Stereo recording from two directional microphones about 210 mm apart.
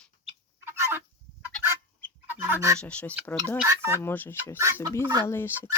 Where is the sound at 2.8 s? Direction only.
5° left (ahead or behind).